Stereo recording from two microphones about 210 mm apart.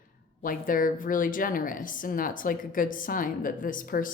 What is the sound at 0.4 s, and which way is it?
A woman's voice, 40° left (ahead or behind).